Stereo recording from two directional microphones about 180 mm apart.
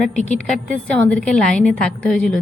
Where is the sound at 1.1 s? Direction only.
5° left (ahead or behind).